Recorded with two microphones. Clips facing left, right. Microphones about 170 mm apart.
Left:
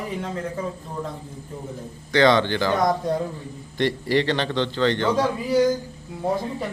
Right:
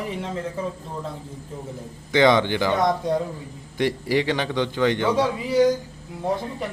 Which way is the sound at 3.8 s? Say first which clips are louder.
Even; 10° right (ahead or behind).